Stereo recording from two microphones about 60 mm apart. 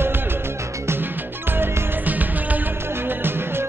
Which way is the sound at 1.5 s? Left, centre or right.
Right.